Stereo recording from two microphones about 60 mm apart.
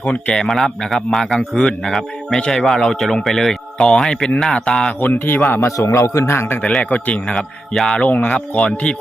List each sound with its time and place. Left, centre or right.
0.0 s a man's voice: centre
4.9 s speech: left
5.5 s a man's voice: left
6.9 s speech: left
7.3 s a man's voice: centre
7.9 s speech: left
8.5 s speech: centre